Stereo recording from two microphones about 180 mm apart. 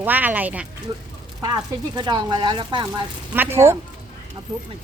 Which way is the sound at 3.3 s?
10° right (ahead or behind).